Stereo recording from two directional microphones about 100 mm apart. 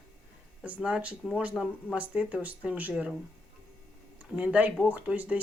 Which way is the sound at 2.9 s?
5° right (ahead or behind).